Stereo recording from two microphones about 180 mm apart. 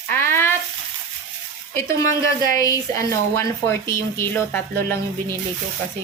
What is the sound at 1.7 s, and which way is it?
Speech, 15° left (ahead or behind).